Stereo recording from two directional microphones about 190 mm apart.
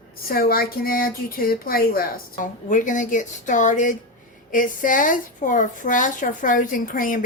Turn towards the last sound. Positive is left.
turn(degrees=45)  # may be behind; listen again after turning